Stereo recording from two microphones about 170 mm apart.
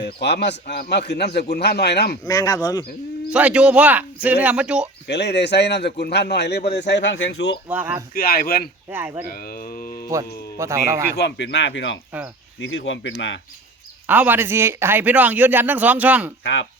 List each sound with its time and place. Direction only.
0.0 s a man's voice: 85° left
2.2 s speech: 20° left (ahead or behind)
3.3 s a man's voice: 5° right (ahead or behind)
5.0 s a man's voice: 90° left
6.7 s a man's voice: 90° left
7.7 s a man's voice: 10° right (ahead or behind)
8.1 s speech: 60° left (ahead or behind)
8.9 s a man's voice: 10° right (ahead or behind)
9.3 s hum: 60° left (ahead or behind)
10.6 s a man's voice: 15° right (ahead or behind)
11.1 s a man's voice: 75° left (ahead or behind)
14.1 s a man's voice: 10° right (ahead or behind)
16.4 s speech: 90° left